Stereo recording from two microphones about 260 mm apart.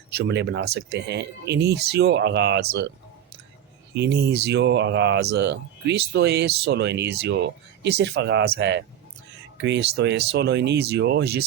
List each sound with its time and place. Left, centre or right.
0.1 s speech: right
3.9 s speech: right